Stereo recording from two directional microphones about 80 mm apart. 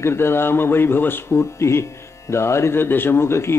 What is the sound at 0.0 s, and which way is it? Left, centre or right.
Speech, left.